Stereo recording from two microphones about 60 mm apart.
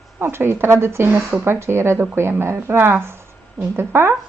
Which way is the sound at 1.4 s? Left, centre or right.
Right.